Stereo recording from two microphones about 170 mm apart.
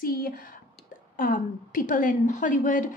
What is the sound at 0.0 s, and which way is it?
A woman's voice, 55° left (ahead or behind).